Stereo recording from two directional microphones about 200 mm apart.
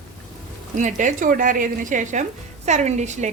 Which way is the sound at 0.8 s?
40° right (ahead or behind).